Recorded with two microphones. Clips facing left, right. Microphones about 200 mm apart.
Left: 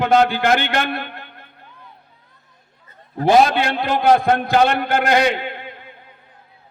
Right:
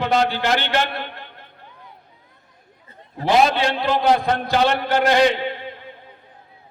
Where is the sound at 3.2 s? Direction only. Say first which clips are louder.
Left 3 dB; 50° left (ahead or behind).